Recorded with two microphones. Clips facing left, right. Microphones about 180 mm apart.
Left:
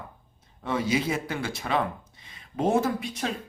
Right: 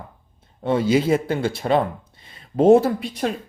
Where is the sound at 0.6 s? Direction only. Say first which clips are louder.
Right 8 dB; 30° right (ahead or behind).